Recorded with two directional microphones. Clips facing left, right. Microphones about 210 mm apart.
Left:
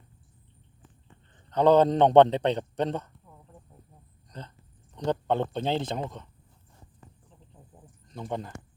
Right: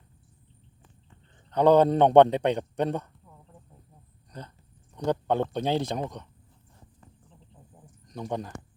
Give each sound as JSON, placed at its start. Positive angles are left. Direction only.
{"t": 1.5, "sound": "a man's voice", "side_deg": -10}
{"t": 4.9, "sound": "a man's voice", "side_deg": -10}
{"t": 8.0, "sound": "speech", "side_deg": -15}